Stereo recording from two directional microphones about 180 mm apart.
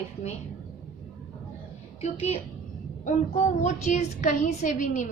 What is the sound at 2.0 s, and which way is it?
A woman's voice, 35° left (ahead or behind).